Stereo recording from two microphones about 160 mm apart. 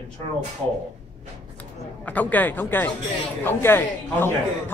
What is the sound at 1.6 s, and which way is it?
A man's voice, 10° left (ahead or behind).